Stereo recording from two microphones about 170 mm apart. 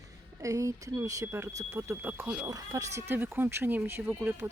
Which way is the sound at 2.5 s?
20° right (ahead or behind).